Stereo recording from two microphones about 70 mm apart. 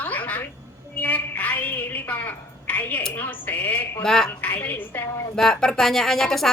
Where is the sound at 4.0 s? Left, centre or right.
Centre.